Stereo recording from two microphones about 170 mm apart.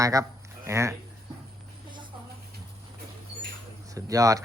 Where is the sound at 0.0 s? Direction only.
20° right (ahead or behind).